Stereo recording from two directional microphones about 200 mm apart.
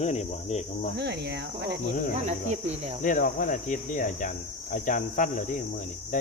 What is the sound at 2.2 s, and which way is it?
Speech, 35° right (ahead or behind).